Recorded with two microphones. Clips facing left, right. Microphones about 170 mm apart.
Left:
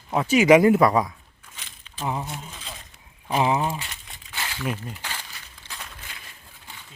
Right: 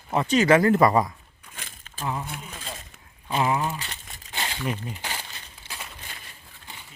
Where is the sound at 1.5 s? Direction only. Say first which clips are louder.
Right 2 dB; 50° right (ahead or behind).